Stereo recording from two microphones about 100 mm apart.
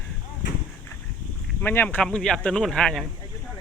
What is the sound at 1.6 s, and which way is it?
Speech, 20° left (ahead or behind).